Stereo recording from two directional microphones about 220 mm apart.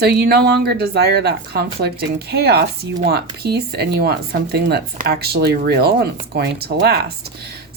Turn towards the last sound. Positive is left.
turn(degrees=-50)  # may be behind; listen again after turning